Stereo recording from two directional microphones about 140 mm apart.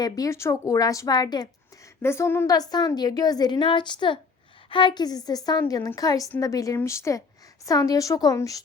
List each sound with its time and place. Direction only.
0.0 s a woman's voice: 25° left (ahead or behind)
2.0 s a woman's voice: 20° left (ahead or behind)